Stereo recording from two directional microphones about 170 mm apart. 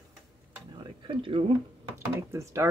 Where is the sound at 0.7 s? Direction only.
30° right (ahead or behind).